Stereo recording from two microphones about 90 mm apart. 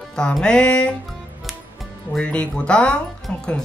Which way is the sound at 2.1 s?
10° left (ahead or behind).